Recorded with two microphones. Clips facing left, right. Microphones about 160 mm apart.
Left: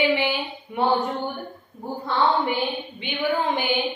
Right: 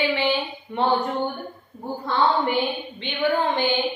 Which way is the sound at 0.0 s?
15° left (ahead or behind).